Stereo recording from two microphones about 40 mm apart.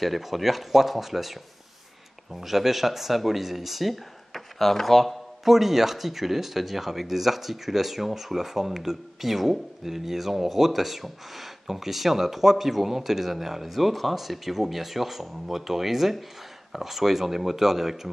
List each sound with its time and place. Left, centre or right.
0.0 s speech: centre
5.5 s speech: centre